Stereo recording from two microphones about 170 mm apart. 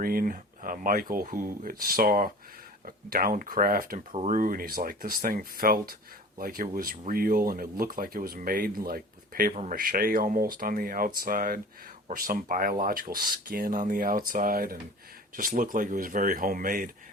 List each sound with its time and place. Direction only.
0.0 s speech: 60° right (ahead or behind)
4.1 s speech: 45° right (ahead or behind)